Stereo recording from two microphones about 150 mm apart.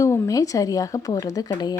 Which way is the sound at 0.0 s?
20° left (ahead or behind).